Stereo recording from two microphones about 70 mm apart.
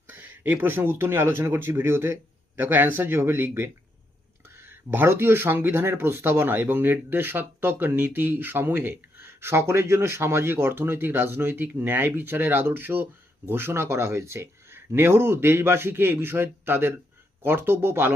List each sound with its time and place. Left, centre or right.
0.1 s speech: right